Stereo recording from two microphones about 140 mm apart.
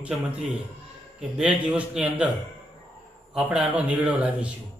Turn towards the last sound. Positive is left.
turn(degrees=-10)  # may be behind; listen again after turning